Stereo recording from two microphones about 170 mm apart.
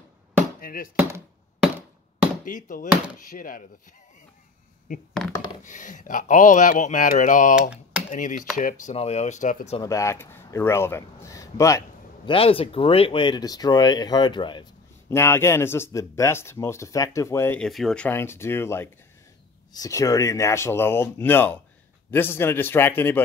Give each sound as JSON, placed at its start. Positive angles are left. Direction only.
{"t": 0.6, "sound": "a sound", "side_deg": 55}
{"t": 0.9, "sound": "a sound", "side_deg": -10}
{"t": 2.4, "sound": "speech", "side_deg": 50}
{"t": 5.2, "sound": "a sound", "side_deg": 0}
{"t": 5.6, "sound": "speech", "side_deg": 50}
{"t": 8.9, "sound": "speech", "side_deg": 40}
{"t": 9.8, "sound": "speech", "side_deg": 20}
{"t": 12.3, "sound": "speech", "side_deg": 35}
{"t": 15.0, "sound": "speech", "side_deg": 15}
{"t": 17.6, "sound": "speech", "side_deg": 0}